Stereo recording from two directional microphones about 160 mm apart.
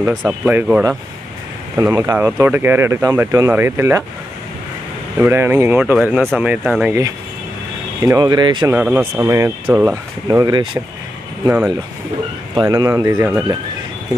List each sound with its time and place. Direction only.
0.0 s speech: 10° right (ahead or behind)
5.2 s speech: 15° right (ahead or behind)
8.0 s speech: 25° right (ahead or behind)
8.7 s speech: 10° right (ahead or behind)
10.4 s speech: 30° right (ahead or behind)
12.5 s speech: 25° right (ahead or behind)